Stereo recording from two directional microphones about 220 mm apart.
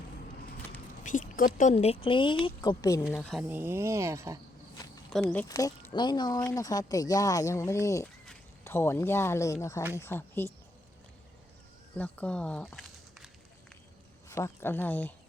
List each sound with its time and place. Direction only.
1.0 s a woman's voice: 35° left (ahead or behind); by 3.0 s 15° left (ahead or behind)
3.2 s speech: centre (ahead or behind)
5.1 s speech: 5° left (ahead or behind)
11.9 s speech: 5° left (ahead or behind)
14.3 s speech: 15° left (ahead or behind)